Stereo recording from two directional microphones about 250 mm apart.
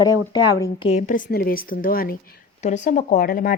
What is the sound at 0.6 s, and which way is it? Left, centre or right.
A woman's voice, left.